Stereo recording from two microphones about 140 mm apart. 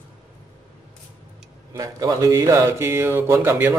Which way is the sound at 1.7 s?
25° right (ahead or behind).